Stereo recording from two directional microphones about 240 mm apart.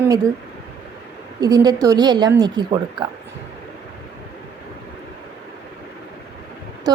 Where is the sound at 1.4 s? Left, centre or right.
Centre.